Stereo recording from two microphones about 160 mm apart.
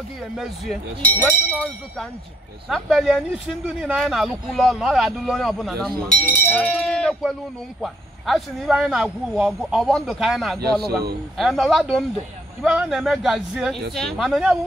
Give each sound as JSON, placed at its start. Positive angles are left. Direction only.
{"t": 0.4, "sound": "speech", "side_deg": 0}
{"t": 6.0, "sound": "speech", "side_deg": 10}